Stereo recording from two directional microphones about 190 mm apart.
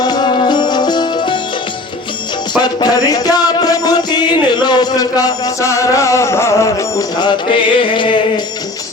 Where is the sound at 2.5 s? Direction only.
20° left (ahead or behind).